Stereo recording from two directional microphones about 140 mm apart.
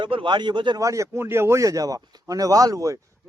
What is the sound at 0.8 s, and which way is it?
A man's voice, 20° right (ahead or behind).